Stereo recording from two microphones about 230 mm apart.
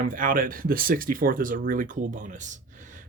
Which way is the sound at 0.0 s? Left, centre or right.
Right.